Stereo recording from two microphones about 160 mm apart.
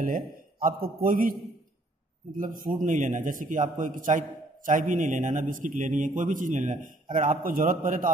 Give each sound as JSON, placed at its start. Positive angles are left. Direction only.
{"t": 0.0, "sound": "a man's voice", "side_deg": -60}
{"t": 2.3, "sound": "a man's voice", "side_deg": -60}